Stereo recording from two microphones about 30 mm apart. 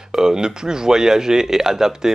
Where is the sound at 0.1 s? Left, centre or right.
Right.